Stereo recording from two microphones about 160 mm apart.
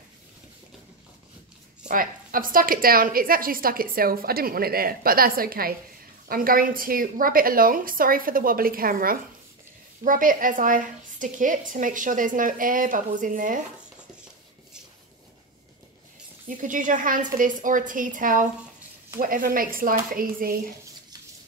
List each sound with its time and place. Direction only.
1.9 s a woman's voice: 60° right (ahead or behind)
16.4 s a woman's voice: 55° right (ahead or behind)